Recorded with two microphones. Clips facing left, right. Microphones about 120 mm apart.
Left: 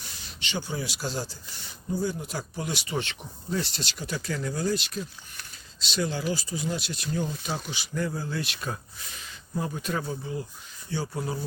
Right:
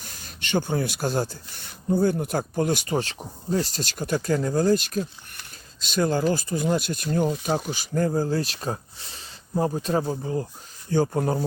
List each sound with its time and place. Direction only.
0.0 s speech: 45° right (ahead or behind)